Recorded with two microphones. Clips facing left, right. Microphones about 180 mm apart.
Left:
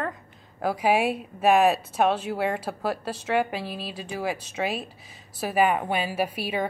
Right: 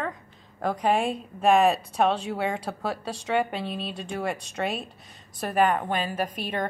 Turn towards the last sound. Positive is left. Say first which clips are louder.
# left 2 dB
turn(degrees=5)  # may be behind; listen again after turning